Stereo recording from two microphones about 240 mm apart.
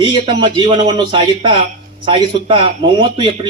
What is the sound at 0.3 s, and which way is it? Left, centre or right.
A man's voice, centre.